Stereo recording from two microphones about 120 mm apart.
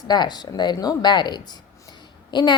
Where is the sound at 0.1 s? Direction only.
35° left (ahead or behind).